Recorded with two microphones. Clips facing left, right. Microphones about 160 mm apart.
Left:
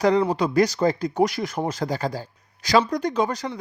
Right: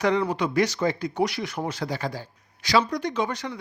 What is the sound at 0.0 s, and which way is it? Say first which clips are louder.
Speech: left 4 dB; 35° left (ahead or behind).